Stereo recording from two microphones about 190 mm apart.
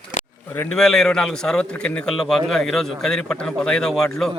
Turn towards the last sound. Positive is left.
turn(degrees=5)  # may be behind; listen again after turning